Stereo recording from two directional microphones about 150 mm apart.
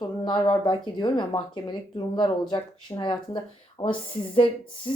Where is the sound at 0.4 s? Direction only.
30° left (ahead or behind).